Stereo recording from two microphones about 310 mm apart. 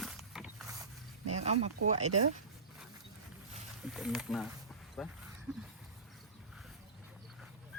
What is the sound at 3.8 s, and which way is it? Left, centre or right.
Speech, centre.